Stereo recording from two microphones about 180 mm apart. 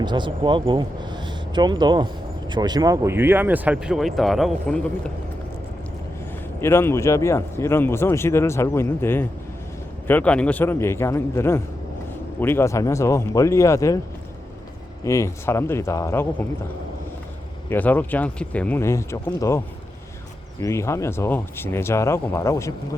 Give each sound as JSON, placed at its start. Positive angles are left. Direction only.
{"t": 0.0, "sound": "speech", "side_deg": -25}
{"t": 6.6, "sound": "speech", "side_deg": 15}
{"t": 15.0, "sound": "speech", "side_deg": 15}
{"t": 17.7, "sound": "speech", "side_deg": 10}